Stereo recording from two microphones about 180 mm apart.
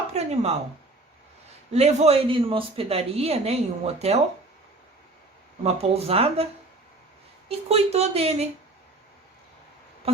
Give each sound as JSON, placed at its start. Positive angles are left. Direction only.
{"t": 0.1, "sound": "a sound", "side_deg": -35}
{"t": 1.7, "sound": "a woman's voice", "side_deg": -35}
{"t": 5.6, "sound": "a woman's voice", "side_deg": -35}